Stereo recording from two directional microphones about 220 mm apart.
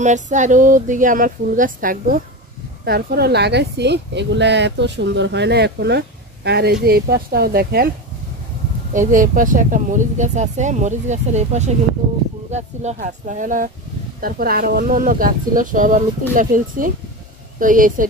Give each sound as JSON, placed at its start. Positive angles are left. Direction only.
{"t": 0.0, "sound": "a woman's voice", "side_deg": -35}
{"t": 8.9, "sound": "speech", "side_deg": -35}